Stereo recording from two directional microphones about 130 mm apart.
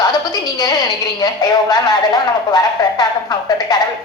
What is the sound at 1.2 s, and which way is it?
Speech, 30° left (ahead or behind).